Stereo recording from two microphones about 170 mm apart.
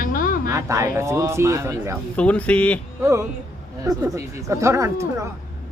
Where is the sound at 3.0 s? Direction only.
15° right (ahead or behind).